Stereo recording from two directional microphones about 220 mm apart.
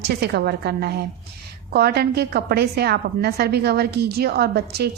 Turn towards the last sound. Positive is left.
turn(degrees=-45)  # may be behind; listen again after turning